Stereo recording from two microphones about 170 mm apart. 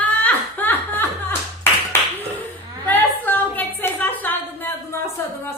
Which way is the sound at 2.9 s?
10° left (ahead or behind).